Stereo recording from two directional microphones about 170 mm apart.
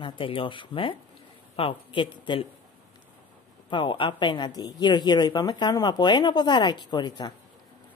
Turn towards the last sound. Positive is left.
turn(degrees=25)  # may be behind; listen again after turning